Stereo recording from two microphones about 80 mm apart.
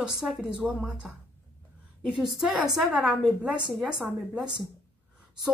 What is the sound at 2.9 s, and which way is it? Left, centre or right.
Speech, centre.